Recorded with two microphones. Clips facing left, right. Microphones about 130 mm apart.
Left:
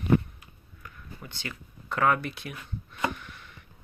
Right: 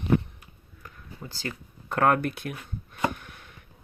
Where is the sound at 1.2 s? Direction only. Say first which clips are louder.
Right 5 dB; 35° right (ahead or behind); by 2.5 s 50° right (ahead or behind).